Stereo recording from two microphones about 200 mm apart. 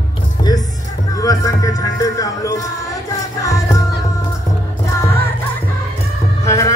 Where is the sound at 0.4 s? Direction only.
20° left (ahead or behind).